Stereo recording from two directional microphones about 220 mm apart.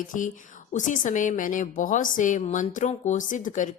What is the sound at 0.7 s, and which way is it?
A woman's voice, 35° left (ahead or behind).